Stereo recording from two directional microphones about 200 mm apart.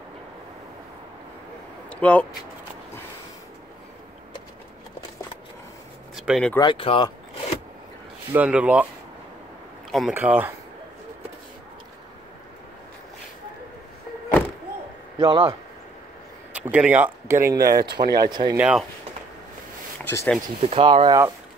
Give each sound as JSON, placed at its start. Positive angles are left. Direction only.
{"t": 1.9, "sound": "a sound", "side_deg": 5}
{"t": 6.1, "sound": "speech", "side_deg": 0}
{"t": 6.6, "sound": "speech", "side_deg": 25}
{"t": 8.3, "sound": "speech", "side_deg": -5}
{"t": 9.8, "sound": "speech", "side_deg": 0}
{"t": 15.1, "sound": "speech", "side_deg": -20}
{"t": 16.5, "sound": "speech", "side_deg": -5}
{"t": 18.6, "sound": "speech", "side_deg": -5}
{"t": 20.1, "sound": "speech", "side_deg": 10}
{"t": 20.6, "sound": "speech", "side_deg": -25}